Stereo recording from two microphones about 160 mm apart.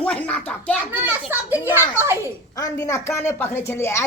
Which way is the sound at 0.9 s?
10° right (ahead or behind).